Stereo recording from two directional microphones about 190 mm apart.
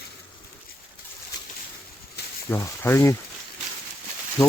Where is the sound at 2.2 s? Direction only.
60° left (ahead or behind).